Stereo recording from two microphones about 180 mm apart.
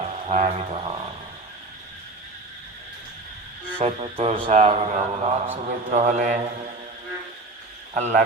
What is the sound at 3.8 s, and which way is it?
Mantra, 35° right (ahead or behind).